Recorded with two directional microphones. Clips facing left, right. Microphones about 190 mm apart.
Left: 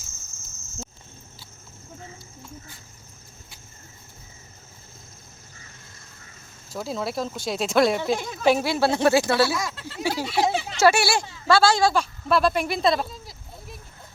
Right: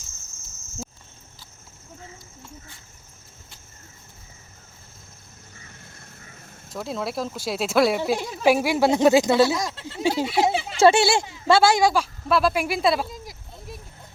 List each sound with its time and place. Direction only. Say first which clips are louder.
6.7 s speech: even; centre (ahead or behind); by 9.6 s 20° right (ahead or behind)
9.6 s speech: right 2 dB; 35° right (ahead or behind)
9.8 s speech: right 4 dB; 20° right (ahead or behind)
11.9 s speech: even; 5° right (ahead or behind)